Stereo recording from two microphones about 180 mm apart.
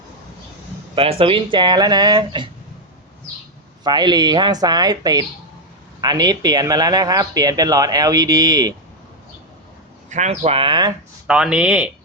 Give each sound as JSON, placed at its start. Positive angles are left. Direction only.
{"t": 0.9, "sound": "speech", "side_deg": -30}
{"t": 3.8, "sound": "speech", "side_deg": -25}
{"t": 10.1, "sound": "speech", "side_deg": -40}
{"t": 11.3, "sound": "speech", "side_deg": -5}